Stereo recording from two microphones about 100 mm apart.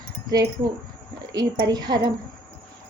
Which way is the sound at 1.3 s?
45° right (ahead or behind).